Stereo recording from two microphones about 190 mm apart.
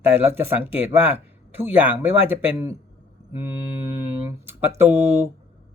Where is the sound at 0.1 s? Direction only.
10° right (ahead or behind).